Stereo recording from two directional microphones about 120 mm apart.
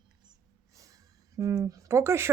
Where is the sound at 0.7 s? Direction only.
30° right (ahead or behind).